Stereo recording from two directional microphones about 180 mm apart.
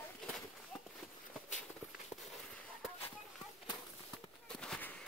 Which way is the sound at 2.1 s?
35° left (ahead or behind).